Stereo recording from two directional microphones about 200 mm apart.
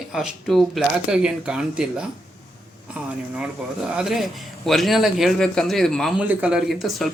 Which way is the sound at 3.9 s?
5° right (ahead or behind).